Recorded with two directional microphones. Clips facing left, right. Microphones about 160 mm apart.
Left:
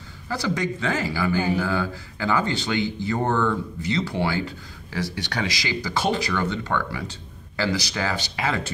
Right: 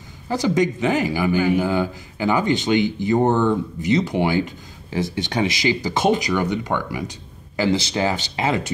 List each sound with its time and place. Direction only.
0.3 s speech: 20° right (ahead or behind)